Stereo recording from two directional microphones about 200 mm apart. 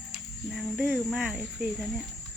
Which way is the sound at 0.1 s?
Centre (ahead or behind).